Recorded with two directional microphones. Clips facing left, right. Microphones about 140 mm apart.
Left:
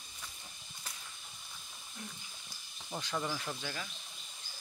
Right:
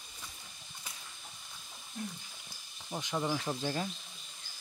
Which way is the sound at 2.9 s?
20° right (ahead or behind).